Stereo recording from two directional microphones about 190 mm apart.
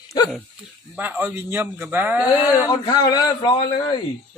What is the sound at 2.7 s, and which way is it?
A man's voice, 20° left (ahead or behind).